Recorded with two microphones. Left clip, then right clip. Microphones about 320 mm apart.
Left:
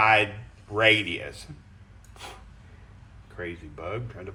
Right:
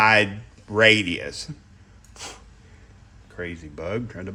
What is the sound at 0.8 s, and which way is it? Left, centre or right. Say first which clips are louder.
Speech: right 4 dB; right.